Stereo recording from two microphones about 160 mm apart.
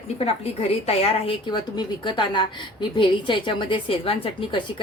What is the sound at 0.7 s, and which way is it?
A woman's voice, 40° left (ahead or behind).